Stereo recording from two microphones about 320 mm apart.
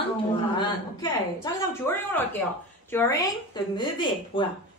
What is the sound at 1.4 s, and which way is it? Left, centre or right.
A woman's voice, centre.